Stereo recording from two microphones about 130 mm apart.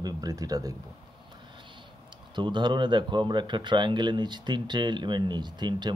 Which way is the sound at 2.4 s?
35° right (ahead or behind).